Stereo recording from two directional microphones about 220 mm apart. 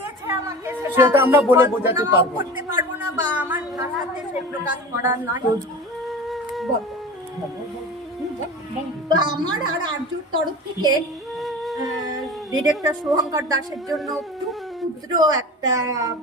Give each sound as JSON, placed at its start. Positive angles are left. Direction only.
{"t": 0.3, "sound": "speech", "side_deg": -10}
{"t": 3.3, "sound": "a sound", "side_deg": -10}
{"t": 5.0, "sound": "a woman's voice", "side_deg": -15}
{"t": 6.0, "sound": "music", "side_deg": 0}
{"t": 9.1, "sound": "speech", "side_deg": -20}
{"t": 11.3, "sound": "music", "side_deg": 0}
{"t": 12.0, "sound": "female singing", "side_deg": -15}
{"t": 13.1, "sound": "a woman's voice", "side_deg": -15}
{"t": 13.9, "sound": "speech", "side_deg": 0}
{"t": 15.1, "sound": "a woman's voice", "side_deg": -20}